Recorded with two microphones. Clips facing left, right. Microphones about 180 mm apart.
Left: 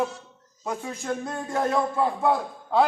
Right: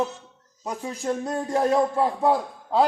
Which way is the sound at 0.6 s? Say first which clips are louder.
Right 2 dB; 35° right (ahead or behind).